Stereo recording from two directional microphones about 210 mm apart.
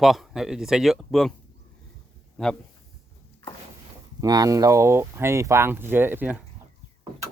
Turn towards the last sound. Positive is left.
turn(degrees=-10)  # may be behind; listen again after turning